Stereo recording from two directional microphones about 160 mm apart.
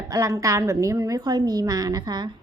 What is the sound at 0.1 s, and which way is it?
A woman's voice, 20° right (ahead or behind).